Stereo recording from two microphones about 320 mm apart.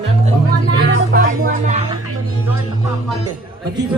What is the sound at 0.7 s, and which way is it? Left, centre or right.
Speech, right.